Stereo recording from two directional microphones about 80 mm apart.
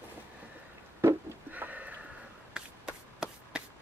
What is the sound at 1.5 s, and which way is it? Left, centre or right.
Sniff, right.